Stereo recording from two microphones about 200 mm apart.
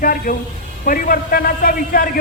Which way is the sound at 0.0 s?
45° left (ahead or behind).